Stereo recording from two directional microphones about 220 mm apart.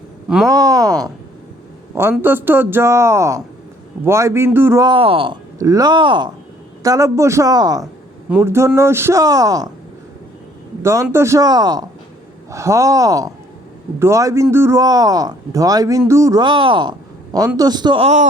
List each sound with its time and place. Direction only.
0.4 s speech: 15° right (ahead or behind)
2.1 s speech: 10° right (ahead or behind)
10.8 s a man's voice: 10° right (ahead or behind); by 18.3 s 30° right (ahead or behind)